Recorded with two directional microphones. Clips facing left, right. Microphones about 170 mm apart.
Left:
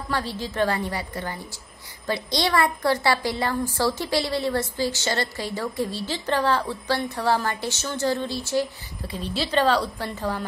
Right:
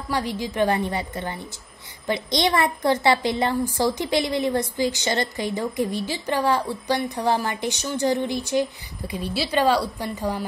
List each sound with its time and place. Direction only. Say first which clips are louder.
0.1 s a woman's voice: right 3 dB; 15° right (ahead or behind)